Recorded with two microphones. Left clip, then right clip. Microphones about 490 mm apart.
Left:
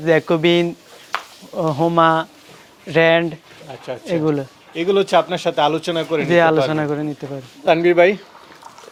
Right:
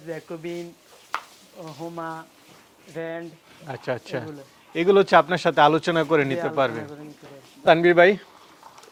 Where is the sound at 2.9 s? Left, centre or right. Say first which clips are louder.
Left 19 dB; left.